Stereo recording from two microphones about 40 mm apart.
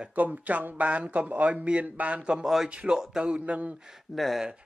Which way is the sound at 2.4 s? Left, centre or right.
Centre.